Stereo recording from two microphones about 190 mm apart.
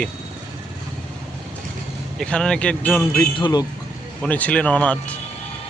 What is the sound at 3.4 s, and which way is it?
Speech, 20° left (ahead or behind).